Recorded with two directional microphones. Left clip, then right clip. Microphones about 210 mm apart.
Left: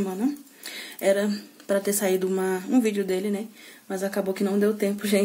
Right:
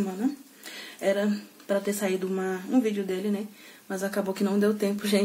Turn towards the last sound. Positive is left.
turn(degrees=20)  # may be behind; listen again after turning